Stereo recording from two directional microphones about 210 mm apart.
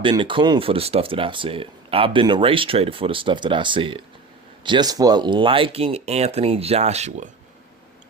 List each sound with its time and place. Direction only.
0.0 s speech: 25° right (ahead or behind)